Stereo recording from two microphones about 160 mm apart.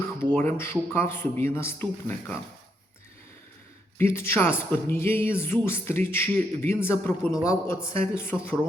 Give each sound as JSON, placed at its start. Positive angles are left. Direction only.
{"t": 0.3, "sound": "speech", "side_deg": 15}
{"t": 3.9, "sound": "speech", "side_deg": 15}